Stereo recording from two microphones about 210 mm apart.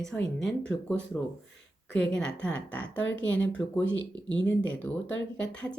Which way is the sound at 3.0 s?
60° left (ahead or behind).